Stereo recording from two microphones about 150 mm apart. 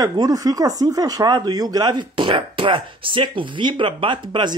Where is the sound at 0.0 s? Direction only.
25° right (ahead or behind).